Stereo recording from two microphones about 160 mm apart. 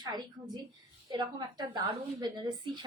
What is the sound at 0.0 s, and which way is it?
A woman's voice, 25° right (ahead or behind).